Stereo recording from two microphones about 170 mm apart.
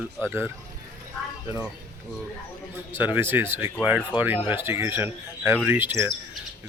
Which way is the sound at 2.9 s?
10° right (ahead or behind).